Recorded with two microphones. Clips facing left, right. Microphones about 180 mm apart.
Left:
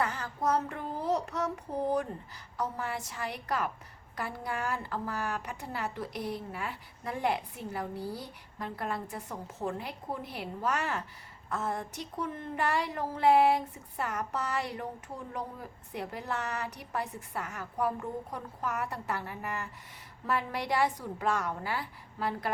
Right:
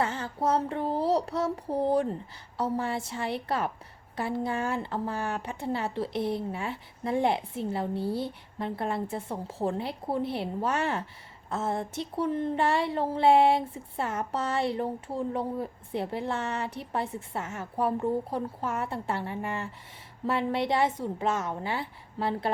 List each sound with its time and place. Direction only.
0.0 s child singing: 25° right (ahead or behind)
2.6 s speech: 30° right (ahead or behind)